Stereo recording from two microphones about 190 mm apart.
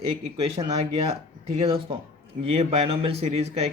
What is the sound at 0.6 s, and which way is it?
Speech, 25° right (ahead or behind).